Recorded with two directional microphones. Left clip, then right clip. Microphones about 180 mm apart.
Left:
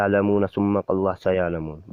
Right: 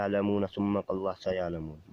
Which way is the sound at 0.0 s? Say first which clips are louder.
Left 9 dB; 30° left (ahead or behind).